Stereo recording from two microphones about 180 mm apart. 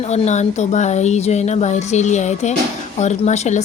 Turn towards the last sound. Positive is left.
turn(degrees=40)  # may be behind; listen again after turning